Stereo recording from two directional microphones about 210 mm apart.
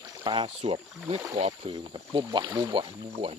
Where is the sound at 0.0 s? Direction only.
15° right (ahead or behind).